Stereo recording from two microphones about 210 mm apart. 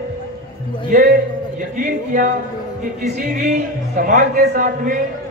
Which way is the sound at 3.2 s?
40° right (ahead or behind).